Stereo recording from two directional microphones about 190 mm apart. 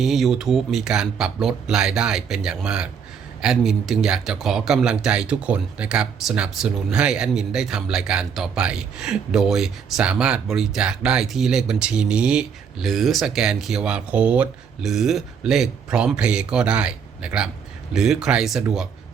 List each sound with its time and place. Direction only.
0.0 s speech: centre (ahead or behind)